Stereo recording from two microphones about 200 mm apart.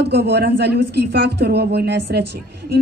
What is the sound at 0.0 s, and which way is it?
A woman's voice, 55° right (ahead or behind).